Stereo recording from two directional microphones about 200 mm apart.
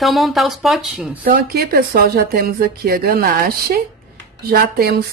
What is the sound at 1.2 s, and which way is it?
Speech, 50° right (ahead or behind).